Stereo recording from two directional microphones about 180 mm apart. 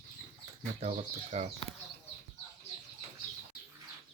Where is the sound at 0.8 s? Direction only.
40° right (ahead or behind).